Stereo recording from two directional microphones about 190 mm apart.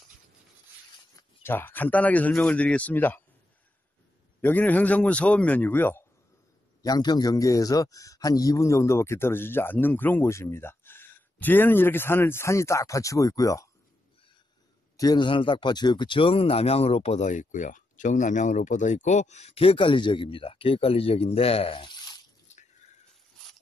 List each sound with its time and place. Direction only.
1.1 s speech: 10° left (ahead or behind)
4.4 s speech: 10° left (ahead or behind)
15.0 s speech: 20° left (ahead or behind)